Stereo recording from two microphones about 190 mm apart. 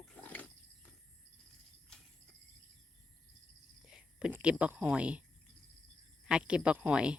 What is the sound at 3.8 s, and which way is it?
Speech, 5° right (ahead or behind).